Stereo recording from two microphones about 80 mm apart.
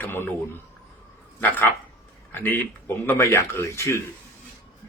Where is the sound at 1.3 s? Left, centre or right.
Left.